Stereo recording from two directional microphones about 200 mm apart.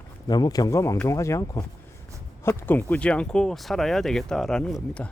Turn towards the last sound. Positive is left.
turn(degrees=0)  # may be behind; listen again after turning